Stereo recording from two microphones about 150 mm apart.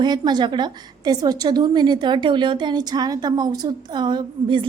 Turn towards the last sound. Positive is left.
turn(degrees=-30)  # may be behind; listen again after turning